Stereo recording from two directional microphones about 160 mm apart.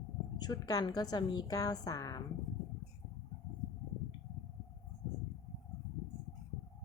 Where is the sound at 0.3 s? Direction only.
25° left (ahead or behind).